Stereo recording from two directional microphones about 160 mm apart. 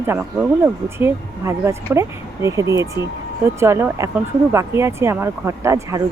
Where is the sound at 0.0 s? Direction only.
15° right (ahead or behind).